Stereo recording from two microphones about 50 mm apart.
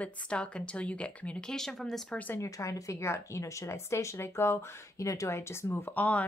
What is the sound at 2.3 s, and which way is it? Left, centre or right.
Speech, left.